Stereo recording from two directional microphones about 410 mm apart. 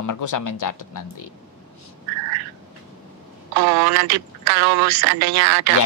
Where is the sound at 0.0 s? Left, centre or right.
Left.